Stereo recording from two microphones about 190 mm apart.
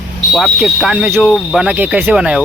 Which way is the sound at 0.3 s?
Centre (ahead or behind).